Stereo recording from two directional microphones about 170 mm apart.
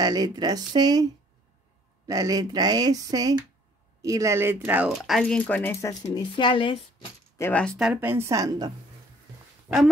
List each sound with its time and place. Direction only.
0.0 s speech: 20° right (ahead or behind)
2.0 s speech: 20° right (ahead or behind); by 5.9 s 15° left (ahead or behind)
6.1 s speech: 30° left (ahead or behind)
7.3 s speech: 10° left (ahead or behind); by 8.7 s 20° right (ahead or behind)
9.7 s speech: 10° right (ahead or behind)